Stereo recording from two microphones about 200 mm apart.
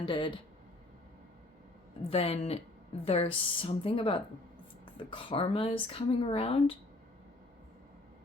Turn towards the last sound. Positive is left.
turn(degrees=30)  # may be behind; listen again after turning